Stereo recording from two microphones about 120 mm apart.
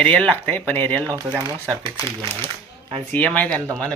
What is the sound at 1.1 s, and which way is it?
Speech, 20° right (ahead or behind).